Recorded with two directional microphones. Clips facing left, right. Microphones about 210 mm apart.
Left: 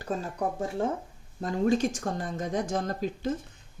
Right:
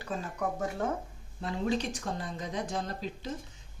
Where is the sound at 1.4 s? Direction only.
45° left (ahead or behind).